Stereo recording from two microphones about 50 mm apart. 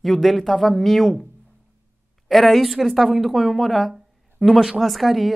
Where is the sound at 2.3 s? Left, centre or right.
Centre.